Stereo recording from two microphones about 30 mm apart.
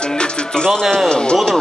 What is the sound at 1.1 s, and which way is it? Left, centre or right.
Speech, left.